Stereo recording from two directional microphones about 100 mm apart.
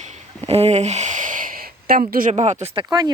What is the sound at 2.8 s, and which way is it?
Speech, 40° right (ahead or behind).